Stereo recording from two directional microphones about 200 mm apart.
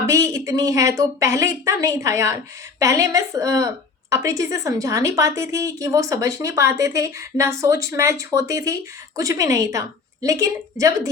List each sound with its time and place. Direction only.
0.1 s a woman's voice: 15° right (ahead or behind)